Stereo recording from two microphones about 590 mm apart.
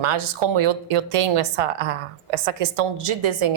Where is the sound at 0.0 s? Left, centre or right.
Right.